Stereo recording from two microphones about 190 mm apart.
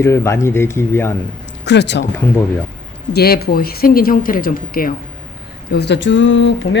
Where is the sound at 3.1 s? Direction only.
55° left (ahead or behind).